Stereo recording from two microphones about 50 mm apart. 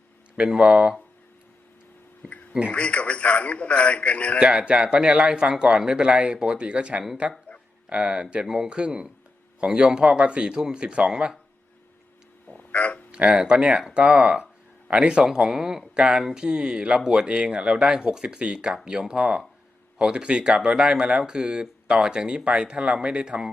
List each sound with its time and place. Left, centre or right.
0.3 s a man's voice: right
2.5 s speech: right
2.7 s a man's voice: left
4.4 s a man's voice: right
12.5 s a sound: left
13.1 s a man's voice: right